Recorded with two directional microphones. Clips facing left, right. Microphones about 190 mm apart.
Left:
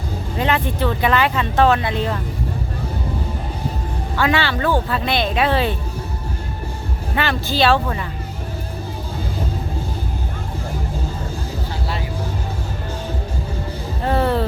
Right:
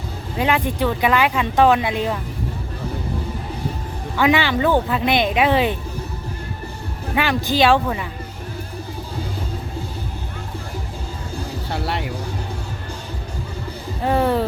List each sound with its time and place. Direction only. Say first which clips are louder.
0.3 s speech: right 1 dB; 10° right (ahead or behind)
4.2 s speech: right 2 dB; 15° right (ahead or behind)
7.2 s speech: right 1 dB; 15° right (ahead or behind)
11.7 s vehicle: right 6 dB; 65° right (ahead or behind)
14.0 s speech: right 1 dB; 10° right (ahead or behind)